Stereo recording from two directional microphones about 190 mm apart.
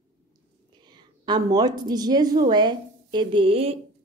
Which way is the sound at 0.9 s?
20° right (ahead or behind).